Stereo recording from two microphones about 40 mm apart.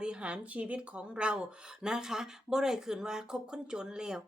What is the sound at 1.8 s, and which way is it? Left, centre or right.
Speech, centre.